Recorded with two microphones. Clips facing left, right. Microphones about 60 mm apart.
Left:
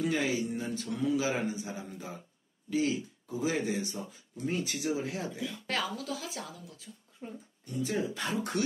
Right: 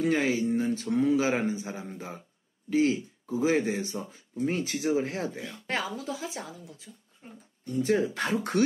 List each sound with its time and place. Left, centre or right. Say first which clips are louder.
0.0 s speech: right 5 dB; right
5.5 s speech: right 2 dB; right
7.6 s speech: right 7 dB; right